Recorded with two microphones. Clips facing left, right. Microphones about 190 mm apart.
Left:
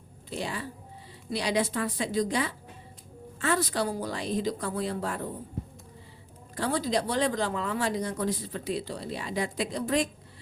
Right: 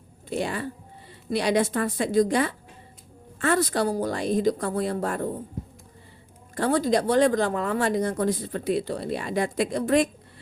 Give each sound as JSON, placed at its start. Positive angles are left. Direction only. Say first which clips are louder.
{"t": 0.3, "sound": "a woman's voice", "louder": "right 6 dB", "side_deg": -55}
{"t": 6.6, "sound": "a woman's voice", "louder": "right 6 dB", "side_deg": -50}